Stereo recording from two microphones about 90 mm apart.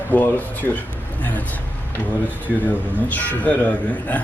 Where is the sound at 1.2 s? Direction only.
20° left (ahead or behind).